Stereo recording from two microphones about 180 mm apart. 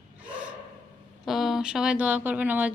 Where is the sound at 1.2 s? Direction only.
Centre (ahead or behind).